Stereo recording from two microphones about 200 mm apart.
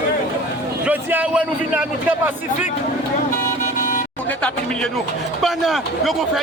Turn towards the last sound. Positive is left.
turn(degrees=0)  # may be behind; listen again after turning